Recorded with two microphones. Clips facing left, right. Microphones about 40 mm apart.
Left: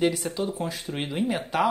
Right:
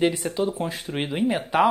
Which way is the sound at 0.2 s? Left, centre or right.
Centre.